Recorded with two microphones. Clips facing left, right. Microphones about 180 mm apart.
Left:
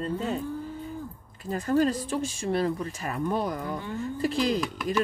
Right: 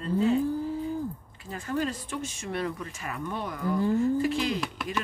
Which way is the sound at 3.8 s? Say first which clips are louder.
Right 9 dB; 35° right (ahead or behind).